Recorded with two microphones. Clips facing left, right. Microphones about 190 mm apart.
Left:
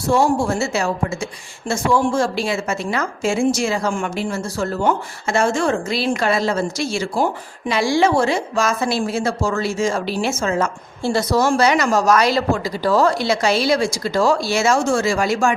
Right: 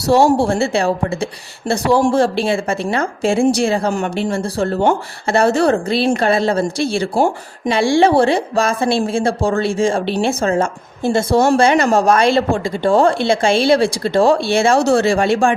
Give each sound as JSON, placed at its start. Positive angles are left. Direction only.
{"t": 0.1, "sound": "a woman's voice", "side_deg": -35}
{"t": 2.1, "sound": "a woman's voice", "side_deg": -30}
{"t": 14.8, "sound": "speech", "side_deg": -70}
{"t": 15.0, "sound": "a woman's voice", "side_deg": -30}